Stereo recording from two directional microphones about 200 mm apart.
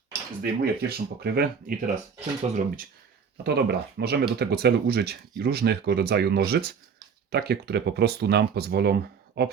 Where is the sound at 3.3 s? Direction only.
55° right (ahead or behind).